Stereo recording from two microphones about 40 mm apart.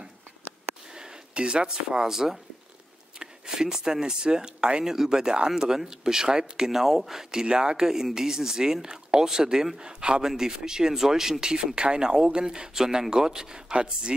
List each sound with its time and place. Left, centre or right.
0.9 s speech: right